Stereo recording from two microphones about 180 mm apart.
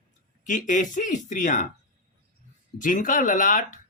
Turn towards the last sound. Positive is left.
turn(degrees=45)  # may be behind; listen again after turning